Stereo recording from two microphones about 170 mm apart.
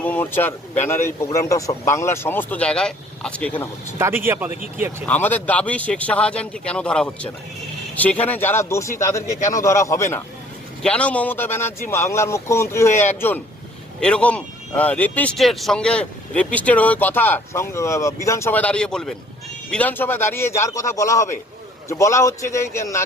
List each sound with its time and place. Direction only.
0.0 s speech: 10° left (ahead or behind)
3.9 s speech: 15° right (ahead or behind)
5.0 s speech: 10° left (ahead or behind)